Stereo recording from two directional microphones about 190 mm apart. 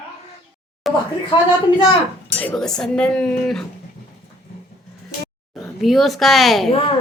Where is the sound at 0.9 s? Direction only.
Centre (ahead or behind).